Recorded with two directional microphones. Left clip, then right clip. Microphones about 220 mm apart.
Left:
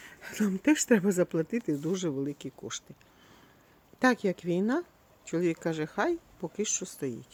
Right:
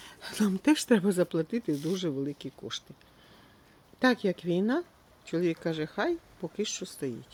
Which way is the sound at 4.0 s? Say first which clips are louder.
Even; centre (ahead or behind).